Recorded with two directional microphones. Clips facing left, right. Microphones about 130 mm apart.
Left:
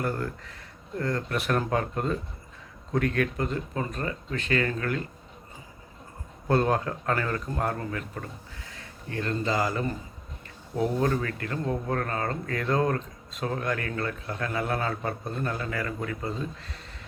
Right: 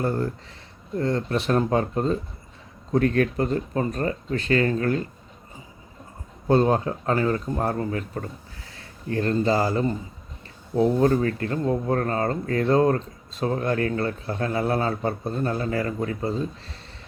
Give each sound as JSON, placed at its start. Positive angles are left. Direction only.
{"t": 0.0, "sound": "speech", "side_deg": -30}
{"t": 6.5, "sound": "speech", "side_deg": -25}